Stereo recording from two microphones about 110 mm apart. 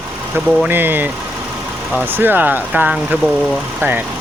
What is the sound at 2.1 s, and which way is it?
Speech, 20° right (ahead or behind).